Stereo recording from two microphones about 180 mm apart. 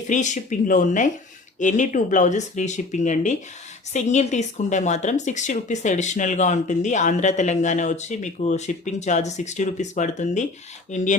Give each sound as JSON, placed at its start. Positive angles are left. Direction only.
{"t": 0.1, "sound": "speech", "side_deg": 45}